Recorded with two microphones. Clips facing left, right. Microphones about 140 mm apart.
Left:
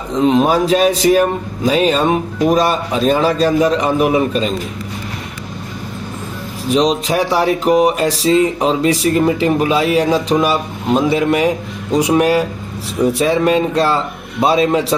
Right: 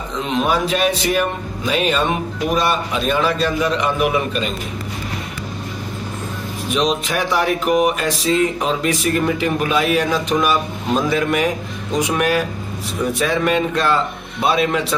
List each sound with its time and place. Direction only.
0.1 s a man's voice: 35° left (ahead or behind)
6.7 s music: 35° left (ahead or behind)
13.0 s a man's voice: 30° left (ahead or behind)